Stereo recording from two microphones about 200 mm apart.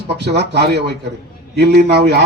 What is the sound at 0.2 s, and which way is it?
Speech, 55° right (ahead or behind).